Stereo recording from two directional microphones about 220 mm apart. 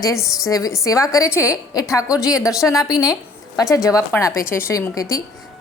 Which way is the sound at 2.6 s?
15° left (ahead or behind).